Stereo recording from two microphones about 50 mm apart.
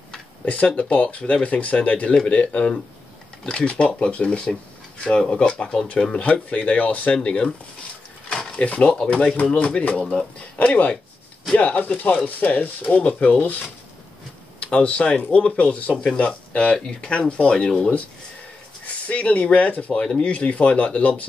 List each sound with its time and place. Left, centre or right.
0.7 s speech: left
8.3 s drawer open or close: centre
9.4 s speech: left
14.6 s speech: left
16.7 s speech: centre
17.1 s speech: left
18.9 s speech: left
20.0 s speech: centre